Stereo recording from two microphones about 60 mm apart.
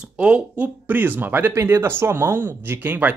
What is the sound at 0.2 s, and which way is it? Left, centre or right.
Speech, centre.